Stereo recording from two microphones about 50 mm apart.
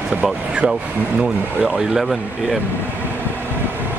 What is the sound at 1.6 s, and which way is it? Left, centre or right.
Speech, centre.